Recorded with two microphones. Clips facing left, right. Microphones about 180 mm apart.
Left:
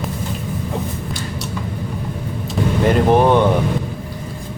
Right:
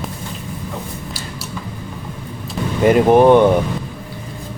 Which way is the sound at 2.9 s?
10° right (ahead or behind).